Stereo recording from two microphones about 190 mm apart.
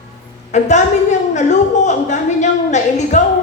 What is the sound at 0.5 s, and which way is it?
A woman's voice, 35° left (ahead or behind).